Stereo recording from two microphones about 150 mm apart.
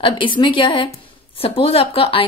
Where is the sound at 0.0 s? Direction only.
35° left (ahead or behind).